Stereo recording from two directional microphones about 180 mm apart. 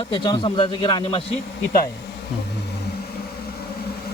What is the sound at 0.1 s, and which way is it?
Speech, 25° left (ahead or behind).